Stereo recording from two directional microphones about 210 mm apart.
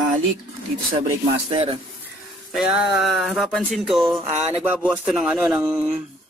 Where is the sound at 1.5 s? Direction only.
25° right (ahead or behind).